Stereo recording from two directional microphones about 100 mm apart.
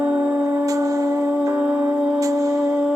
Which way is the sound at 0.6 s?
35° right (ahead or behind).